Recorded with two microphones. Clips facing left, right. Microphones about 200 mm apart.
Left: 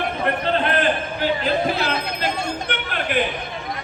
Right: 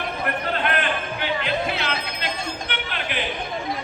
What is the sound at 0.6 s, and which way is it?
Basketball bounce, 35° left (ahead or behind).